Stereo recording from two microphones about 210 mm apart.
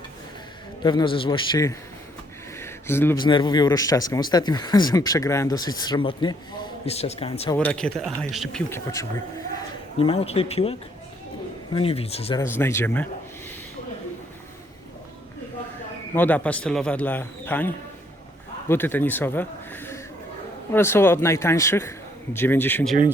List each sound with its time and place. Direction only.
0.8 s speech: 20° left (ahead or behind)
2.6 s a sound: 10° left (ahead or behind)
3.2 s speech: 20° left (ahead or behind)
7.5 s speech: 5° left (ahead or behind)
8.7 s a man's voice: 15° left (ahead or behind)
10.0 s speech: 25° left (ahead or behind)
12.4 s a man's voice: 10° left (ahead or behind)
16.1 s a man's voice: 10° left (ahead or behind)